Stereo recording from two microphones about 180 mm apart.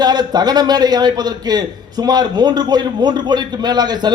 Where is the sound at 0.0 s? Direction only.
20° right (ahead or behind).